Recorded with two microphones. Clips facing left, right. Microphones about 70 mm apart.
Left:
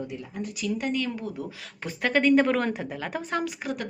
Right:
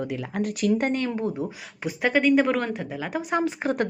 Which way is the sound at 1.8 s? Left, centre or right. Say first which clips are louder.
Right 2 dB; centre.